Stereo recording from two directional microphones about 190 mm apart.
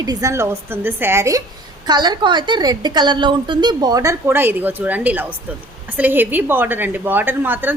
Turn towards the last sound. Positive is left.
turn(degrees=-10)  # may be behind; listen again after turning